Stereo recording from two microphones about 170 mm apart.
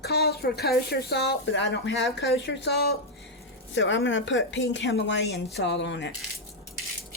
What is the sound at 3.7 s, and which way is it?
Speech, 90° left.